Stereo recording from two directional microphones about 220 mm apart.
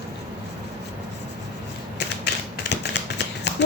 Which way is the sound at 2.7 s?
50° left (ahead or behind).